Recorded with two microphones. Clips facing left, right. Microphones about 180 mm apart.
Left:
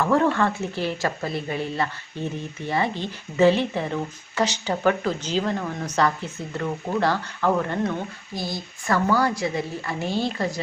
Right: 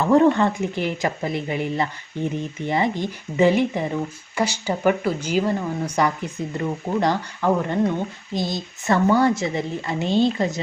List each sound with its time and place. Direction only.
0.0 s a woman's voice: 20° right (ahead or behind)